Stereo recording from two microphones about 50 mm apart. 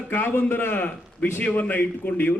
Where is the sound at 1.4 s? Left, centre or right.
Left.